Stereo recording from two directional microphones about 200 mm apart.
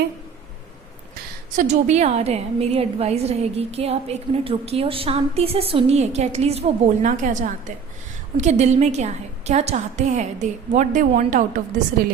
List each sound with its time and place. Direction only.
1.5 s a woman's voice: 35° right (ahead or behind)